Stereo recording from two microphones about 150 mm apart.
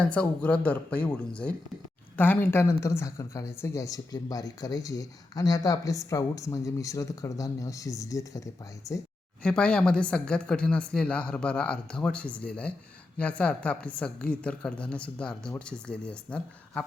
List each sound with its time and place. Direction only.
0.0 s speech: 10° left (ahead or behind)
9.4 s speech: 5° left (ahead or behind)